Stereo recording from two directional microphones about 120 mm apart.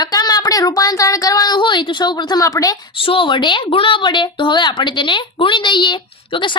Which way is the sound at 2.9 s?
45° left (ahead or behind).